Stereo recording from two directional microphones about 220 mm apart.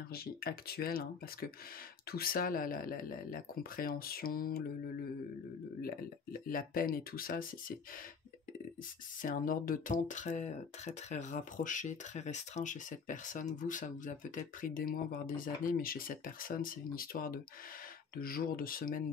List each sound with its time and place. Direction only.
0.1 s speech: 45° left (ahead or behind)
6.4 s speech: 40° left (ahead or behind)
9.2 s speech: 40° left (ahead or behind)